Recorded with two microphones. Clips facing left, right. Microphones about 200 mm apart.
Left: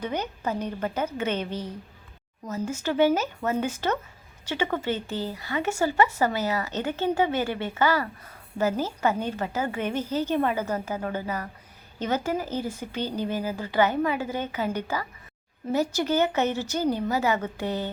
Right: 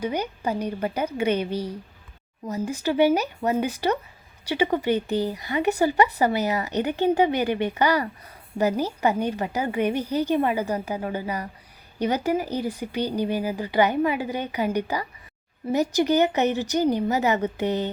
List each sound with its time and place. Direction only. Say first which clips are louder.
0.0 s a woman's voice: right 3 dB; 10° right (ahead or behind)